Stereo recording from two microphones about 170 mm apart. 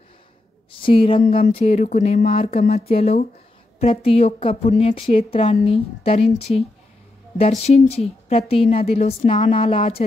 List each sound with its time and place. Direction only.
0.7 s a woman's voice: 30° left (ahead or behind)